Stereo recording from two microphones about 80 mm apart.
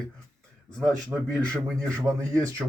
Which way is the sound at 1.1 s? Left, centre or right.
Right.